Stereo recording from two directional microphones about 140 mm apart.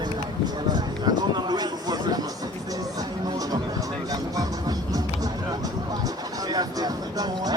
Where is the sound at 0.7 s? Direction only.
30° right (ahead or behind).